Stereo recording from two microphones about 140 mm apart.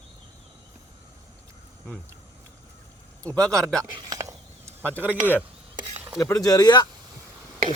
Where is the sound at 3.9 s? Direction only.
30° right (ahead or behind).